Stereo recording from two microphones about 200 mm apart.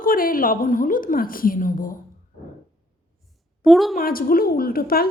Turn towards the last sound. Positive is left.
turn(degrees=50)  # may be behind; listen again after turning